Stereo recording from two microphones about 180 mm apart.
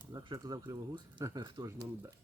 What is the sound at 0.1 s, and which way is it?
Speech, 20° right (ahead or behind).